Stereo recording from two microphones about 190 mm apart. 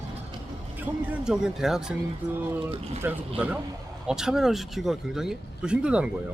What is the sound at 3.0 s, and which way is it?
Speech, 10° right (ahead or behind).